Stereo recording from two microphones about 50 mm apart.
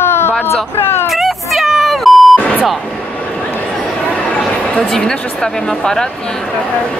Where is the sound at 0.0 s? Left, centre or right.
Left.